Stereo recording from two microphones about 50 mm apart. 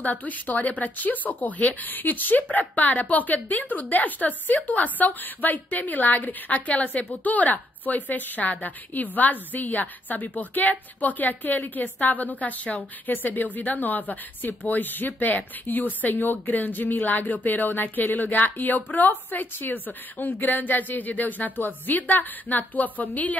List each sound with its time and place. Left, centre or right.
0.0 s a woman's voice: left